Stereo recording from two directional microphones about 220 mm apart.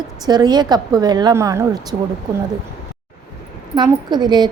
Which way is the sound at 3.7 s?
20° right (ahead or behind).